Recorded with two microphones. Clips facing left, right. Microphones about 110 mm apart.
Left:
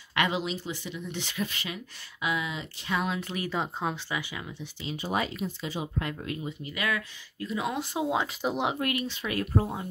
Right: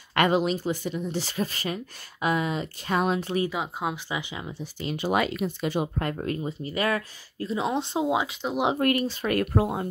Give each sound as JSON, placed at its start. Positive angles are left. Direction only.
{"t": 0.1, "sound": "speech", "side_deg": -50}
{"t": 3.4, "sound": "speech", "side_deg": -10}
{"t": 4.9, "sound": "speech", "side_deg": -75}
{"t": 8.3, "sound": "speech", "side_deg": 5}
{"t": 8.7, "sound": "speech", "side_deg": -45}
{"t": 9.5, "sound": "speech", "side_deg": -75}